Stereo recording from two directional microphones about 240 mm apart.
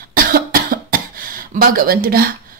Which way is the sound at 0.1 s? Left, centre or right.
Right.